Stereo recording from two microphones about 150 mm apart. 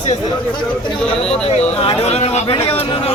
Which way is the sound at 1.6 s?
45° left (ahead or behind).